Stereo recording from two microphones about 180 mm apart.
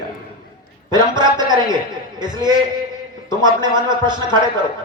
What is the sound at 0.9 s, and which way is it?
Speech, 25° right (ahead or behind).